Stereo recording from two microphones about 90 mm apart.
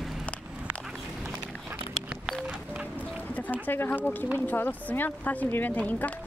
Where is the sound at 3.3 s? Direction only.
20° left (ahead or behind).